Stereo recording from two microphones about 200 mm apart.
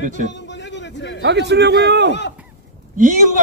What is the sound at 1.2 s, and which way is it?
Speech, 60° right (ahead or behind).